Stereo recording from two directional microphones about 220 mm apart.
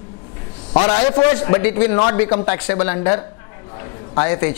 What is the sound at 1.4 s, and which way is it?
A woman's voice, 15° left (ahead or behind).